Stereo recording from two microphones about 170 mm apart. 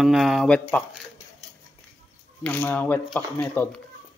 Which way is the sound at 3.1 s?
5° left (ahead or behind).